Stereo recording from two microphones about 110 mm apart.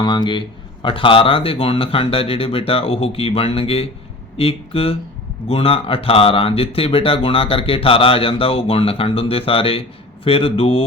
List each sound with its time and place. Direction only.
0.0 s speech: 40° left (ahead or behind); by 10.8 s 60° left (ahead or behind)